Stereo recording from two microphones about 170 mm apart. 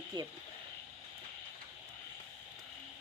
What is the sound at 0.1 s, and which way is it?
Speech, 25° right (ahead or behind).